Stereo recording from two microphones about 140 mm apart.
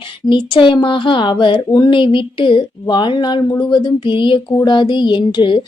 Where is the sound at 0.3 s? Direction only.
35° left (ahead or behind).